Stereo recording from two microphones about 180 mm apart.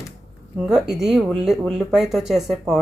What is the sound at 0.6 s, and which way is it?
A woman's voice, centre (ahead or behind).